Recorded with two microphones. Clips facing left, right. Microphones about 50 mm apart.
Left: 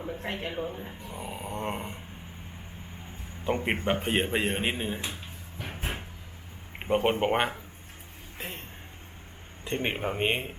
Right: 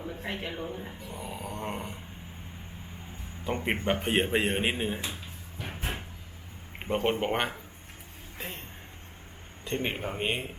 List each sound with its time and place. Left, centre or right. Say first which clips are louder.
0.3 s speech: left 2 dB; centre
3.4 s speech: left 1 dB; centre
4.9 s speech: even; centre
5.6 s vehicle: even; centre
6.7 s speech: left 3 dB; centre
9.6 s speech: left 2 dB; centre
10.2 s speech: left 2 dB; left